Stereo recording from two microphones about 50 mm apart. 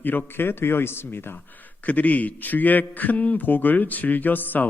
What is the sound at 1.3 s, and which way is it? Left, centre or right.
A man's voice, left.